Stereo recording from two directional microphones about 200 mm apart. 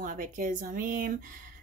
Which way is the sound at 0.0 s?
40° right (ahead or behind).